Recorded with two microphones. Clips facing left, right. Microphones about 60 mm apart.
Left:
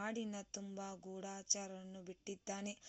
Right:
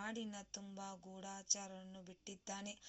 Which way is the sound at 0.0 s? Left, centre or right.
Left.